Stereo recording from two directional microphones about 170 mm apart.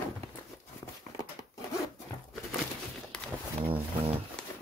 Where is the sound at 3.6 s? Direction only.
35° right (ahead or behind).